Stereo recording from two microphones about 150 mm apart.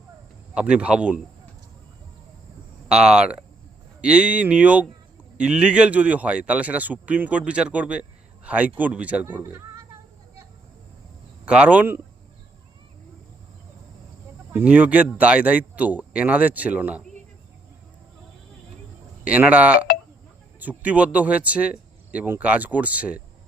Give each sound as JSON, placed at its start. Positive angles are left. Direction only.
{"t": 0.5, "sound": "speech", "side_deg": -5}
{"t": 2.9, "sound": "speech", "side_deg": -5}
{"t": 9.4, "sound": "speech", "side_deg": -20}
{"t": 11.4, "sound": "speech", "side_deg": -10}
{"t": 14.5, "sound": "speech", "side_deg": -10}
{"t": 19.2, "sound": "speech", "side_deg": -10}